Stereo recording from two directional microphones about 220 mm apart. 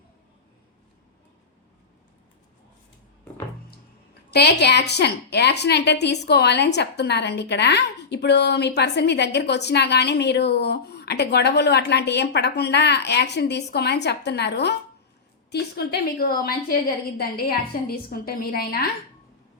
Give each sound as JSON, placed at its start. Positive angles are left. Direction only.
{"t": 4.3, "sound": "a woman's voice", "side_deg": 50}